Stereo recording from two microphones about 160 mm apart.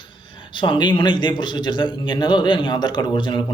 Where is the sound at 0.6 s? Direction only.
30° left (ahead or behind).